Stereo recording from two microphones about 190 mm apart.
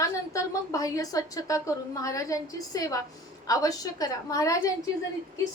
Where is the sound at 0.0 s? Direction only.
15° left (ahead or behind).